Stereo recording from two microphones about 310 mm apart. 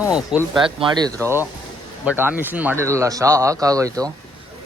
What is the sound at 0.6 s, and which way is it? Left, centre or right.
Speech, centre.